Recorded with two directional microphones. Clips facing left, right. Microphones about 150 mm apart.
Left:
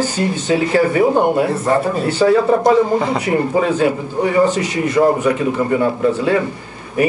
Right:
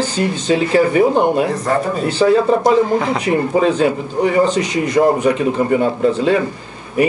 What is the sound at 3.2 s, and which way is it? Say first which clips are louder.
Speech: right 1 dB; 20° right (ahead or behind).